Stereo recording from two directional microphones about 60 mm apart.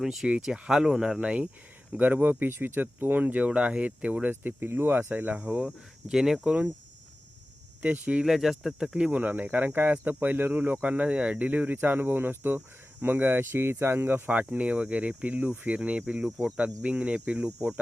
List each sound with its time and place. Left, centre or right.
0.0 s speech: centre
1.2 s speech: centre
5.6 s speech: centre
7.8 s speech: right
8.2 s speech: centre
9.1 s speech: right
14.3 s speech: right